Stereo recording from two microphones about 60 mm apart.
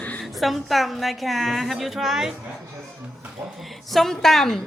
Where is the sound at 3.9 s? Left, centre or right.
Centre.